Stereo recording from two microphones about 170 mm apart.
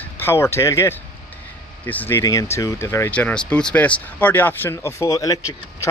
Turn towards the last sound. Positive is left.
turn(degrees=20)  # may be behind; listen again after turning